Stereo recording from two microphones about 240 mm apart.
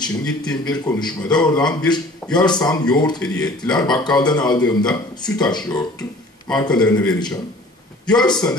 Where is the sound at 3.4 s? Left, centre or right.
Centre.